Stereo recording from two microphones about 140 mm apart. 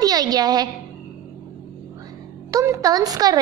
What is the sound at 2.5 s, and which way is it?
Speech, 20° right (ahead or behind).